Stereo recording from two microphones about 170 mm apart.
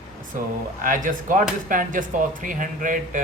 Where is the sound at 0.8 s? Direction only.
50° right (ahead or behind).